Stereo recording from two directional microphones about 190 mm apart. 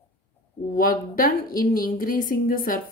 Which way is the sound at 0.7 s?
50° left (ahead or behind).